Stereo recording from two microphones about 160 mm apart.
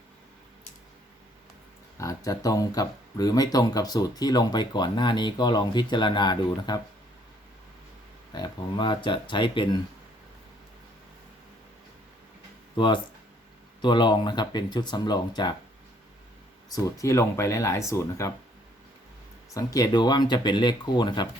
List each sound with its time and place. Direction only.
2.0 s speech: 20° left (ahead or behind)
8.3 s speech: 25° left (ahead or behind)
12.7 s speech: 30° left (ahead or behind)
16.6 s speech: 20° left (ahead or behind)
19.5 s speech: 20° left (ahead or behind)